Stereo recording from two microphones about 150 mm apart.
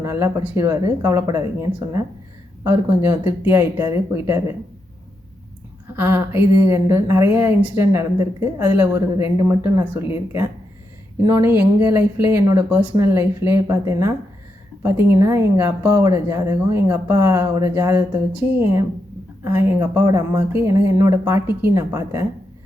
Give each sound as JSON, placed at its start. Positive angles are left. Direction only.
{"t": 0.0, "sound": "speech", "side_deg": -20}
{"t": 6.0, "sound": "speech", "side_deg": -15}